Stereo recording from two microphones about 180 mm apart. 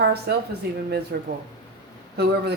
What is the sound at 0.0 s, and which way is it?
Speech, 65° right (ahead or behind).